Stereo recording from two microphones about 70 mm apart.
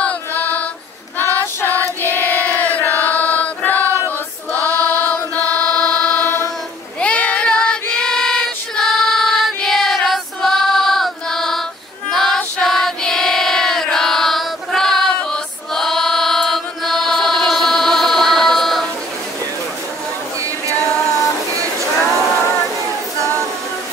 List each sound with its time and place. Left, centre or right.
0.0 s music: left
1.1 s child singing: left
2.8 s chant: left
4.6 s choir: right
4.8 s music: left
7.0 s child singing: centre
12.1 s female singing: centre
12.6 s child singing: centre
15.7 s chant: centre